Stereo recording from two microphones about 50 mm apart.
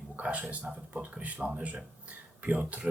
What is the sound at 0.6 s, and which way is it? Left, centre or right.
Speech, right.